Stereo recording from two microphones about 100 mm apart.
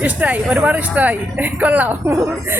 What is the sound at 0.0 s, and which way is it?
A woman's voice, 15° right (ahead or behind).